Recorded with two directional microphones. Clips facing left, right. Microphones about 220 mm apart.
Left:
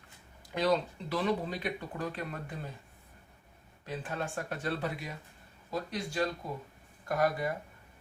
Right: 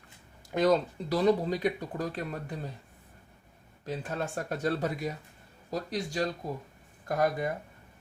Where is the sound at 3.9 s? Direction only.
40° right (ahead or behind).